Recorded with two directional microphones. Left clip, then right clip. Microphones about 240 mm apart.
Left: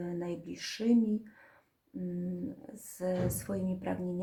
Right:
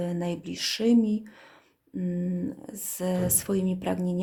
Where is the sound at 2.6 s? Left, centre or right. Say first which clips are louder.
Right 4 dB; right.